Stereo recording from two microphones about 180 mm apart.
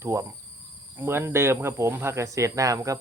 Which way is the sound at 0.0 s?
15° right (ahead or behind).